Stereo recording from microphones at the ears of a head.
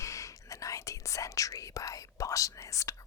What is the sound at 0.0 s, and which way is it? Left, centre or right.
Whispering, left.